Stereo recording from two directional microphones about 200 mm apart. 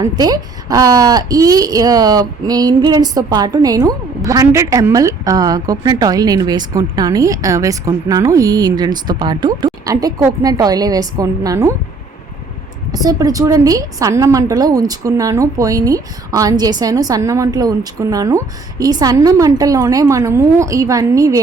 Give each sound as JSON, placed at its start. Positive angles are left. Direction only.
{"t": 0.0, "sound": "a woman's voice", "side_deg": -20}
{"t": 12.9, "sound": "a woman's voice", "side_deg": -20}